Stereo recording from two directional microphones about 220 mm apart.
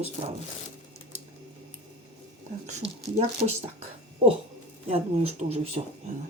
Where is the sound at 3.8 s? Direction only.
25° right (ahead or behind).